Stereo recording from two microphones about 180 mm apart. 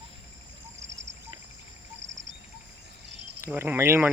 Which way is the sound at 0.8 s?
90° right.